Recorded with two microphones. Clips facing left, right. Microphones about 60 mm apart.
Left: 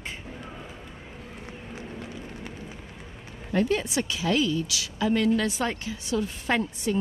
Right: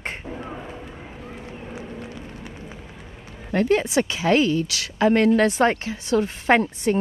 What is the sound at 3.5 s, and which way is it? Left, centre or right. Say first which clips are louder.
Speech: right 5 dB; right.